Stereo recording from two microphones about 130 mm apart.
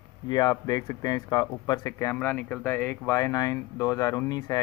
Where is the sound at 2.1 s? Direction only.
15° left (ahead or behind); by 4.6 s 30° left (ahead or behind).